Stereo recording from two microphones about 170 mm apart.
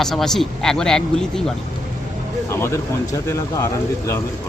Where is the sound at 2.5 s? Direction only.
15° left (ahead or behind).